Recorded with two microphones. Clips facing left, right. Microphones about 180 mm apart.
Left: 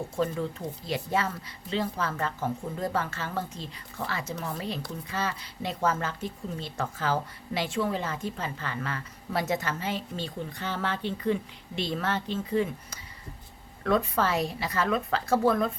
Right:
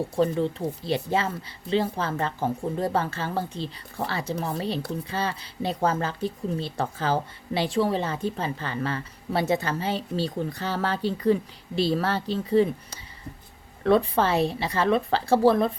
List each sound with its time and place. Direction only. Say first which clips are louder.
0.2 s a woman's voice: right 5 dB; 30° right (ahead or behind)